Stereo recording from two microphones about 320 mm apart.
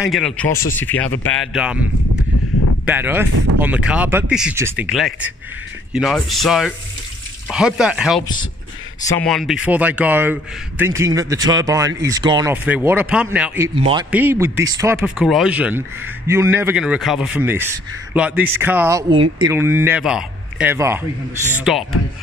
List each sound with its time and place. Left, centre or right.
0.0 s a man's voice: centre
13.7 s a man's voice: centre